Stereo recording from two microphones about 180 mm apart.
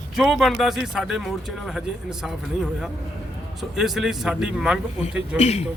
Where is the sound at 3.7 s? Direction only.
Centre (ahead or behind).